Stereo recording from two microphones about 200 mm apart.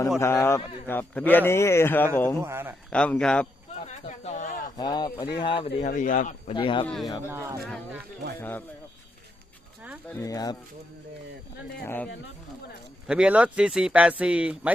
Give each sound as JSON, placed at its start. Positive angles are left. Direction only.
{"t": 0.2, "sound": "a man's voice", "side_deg": 15}
{"t": 2.4, "sound": "a man's voice", "side_deg": -10}
{"t": 2.9, "sound": "speech", "side_deg": 5}
{"t": 3.8, "sound": "a sound", "side_deg": 35}
{"t": 4.8, "sound": "speech", "side_deg": 20}
{"t": 5.6, "sound": "speech", "side_deg": 40}
{"t": 6.5, "sound": "speech", "side_deg": 25}
{"t": 6.8, "sound": "speech", "side_deg": 0}
{"t": 7.3, "sound": "a man's voice", "side_deg": -15}
{"t": 8.4, "sound": "a man's voice", "side_deg": 10}
{"t": 10.1, "sound": "a man's voice", "side_deg": 15}
{"t": 13.1, "sound": "speech", "side_deg": -5}